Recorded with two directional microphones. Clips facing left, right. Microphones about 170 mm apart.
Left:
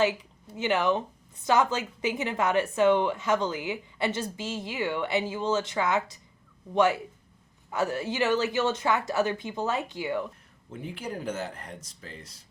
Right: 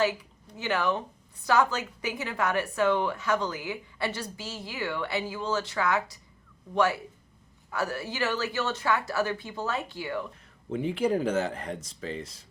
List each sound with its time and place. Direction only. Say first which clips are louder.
0.0 s a woman's voice: left 1 dB; 20° left (ahead or behind)
7.7 s a woman's voice: left 3 dB; 20° left (ahead or behind)
10.7 s speech: right 10 dB; 90° right